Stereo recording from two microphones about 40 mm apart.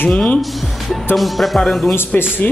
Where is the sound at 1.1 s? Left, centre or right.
Centre.